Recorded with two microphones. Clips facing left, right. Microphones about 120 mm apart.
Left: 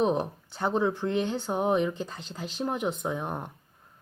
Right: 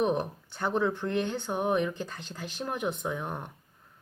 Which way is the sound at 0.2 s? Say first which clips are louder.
Left 2 dB; 20° left (ahead or behind).